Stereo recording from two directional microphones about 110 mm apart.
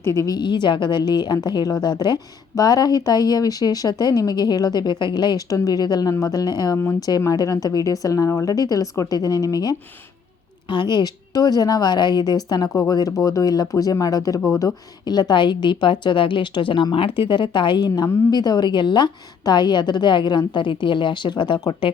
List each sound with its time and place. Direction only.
0.0 s a woman's voice: 25° left (ahead or behind)
0.3 s a woman's voice: 45° left (ahead or behind)